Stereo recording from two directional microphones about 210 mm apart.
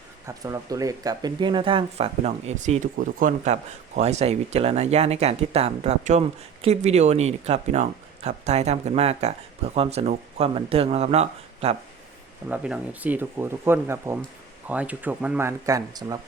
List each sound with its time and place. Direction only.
0.3 s speech: 15° right (ahead or behind); by 11.8 s 30° right (ahead or behind)
12.5 s speech: 5° right (ahead or behind)